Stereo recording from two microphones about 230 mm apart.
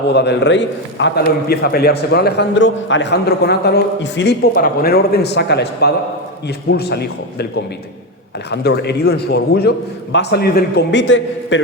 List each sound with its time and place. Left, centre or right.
0.1 s a man's voice: left
8.4 s a man's voice: left